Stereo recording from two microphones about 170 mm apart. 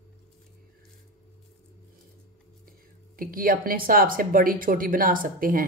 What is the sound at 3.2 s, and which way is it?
Speech, 55° right (ahead or behind).